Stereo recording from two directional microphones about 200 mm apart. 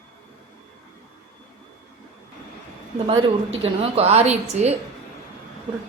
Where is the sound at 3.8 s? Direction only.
30° right (ahead or behind).